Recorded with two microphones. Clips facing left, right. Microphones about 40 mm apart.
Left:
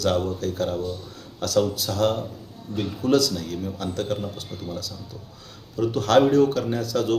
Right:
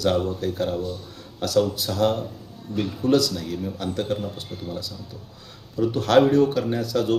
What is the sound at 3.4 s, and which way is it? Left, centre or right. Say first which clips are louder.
A man's voice: right 1 dB; centre.